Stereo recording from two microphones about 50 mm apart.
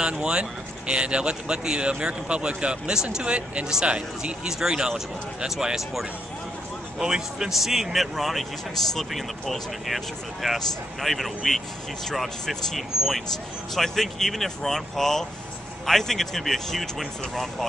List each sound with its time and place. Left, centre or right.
0.0 s speech: centre
7.0 s speech: centre